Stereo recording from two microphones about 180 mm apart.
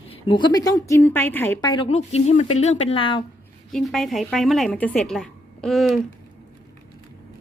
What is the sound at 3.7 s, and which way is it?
A woman's voice, centre (ahead or behind).